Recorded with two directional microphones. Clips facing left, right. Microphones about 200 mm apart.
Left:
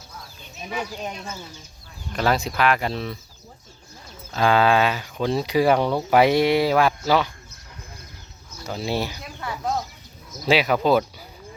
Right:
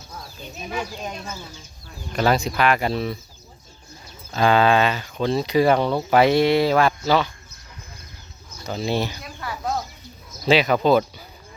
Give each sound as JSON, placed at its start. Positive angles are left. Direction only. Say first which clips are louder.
{"t": 2.1, "sound": "speech", "louder": "right 2 dB", "side_deg": 0}
{"t": 4.3, "sound": "speech", "louder": "right 1 dB", "side_deg": 0}
{"t": 8.6, "sound": "speech", "louder": "right 2 dB", "side_deg": 5}
{"t": 9.4, "sound": "a sound", "louder": "left 1 dB", "side_deg": 25}
{"t": 10.4, "sound": "speech", "louder": "right 2 dB", "side_deg": 10}